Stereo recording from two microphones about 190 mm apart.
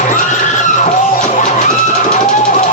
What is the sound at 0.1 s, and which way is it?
Music, 40° left (ahead or behind).